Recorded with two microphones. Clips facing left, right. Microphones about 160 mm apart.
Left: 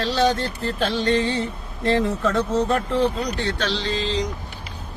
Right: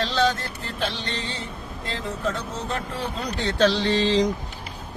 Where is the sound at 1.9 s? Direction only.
65° left (ahead or behind).